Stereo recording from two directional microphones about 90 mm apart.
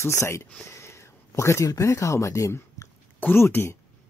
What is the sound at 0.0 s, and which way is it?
Speech, 30° left (ahead or behind).